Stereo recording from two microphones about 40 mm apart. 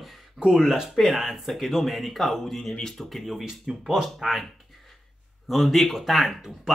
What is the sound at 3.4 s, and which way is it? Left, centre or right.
Speech, centre.